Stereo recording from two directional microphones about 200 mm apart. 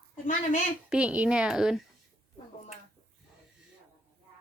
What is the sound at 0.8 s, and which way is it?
Speech, 5° right (ahead or behind).